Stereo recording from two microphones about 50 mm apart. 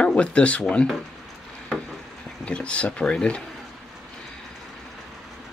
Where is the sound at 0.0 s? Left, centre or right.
Left.